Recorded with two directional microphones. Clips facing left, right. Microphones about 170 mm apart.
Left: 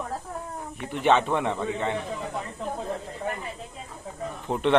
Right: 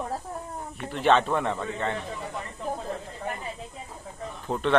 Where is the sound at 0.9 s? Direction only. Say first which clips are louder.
Even; 15° left (ahead or behind).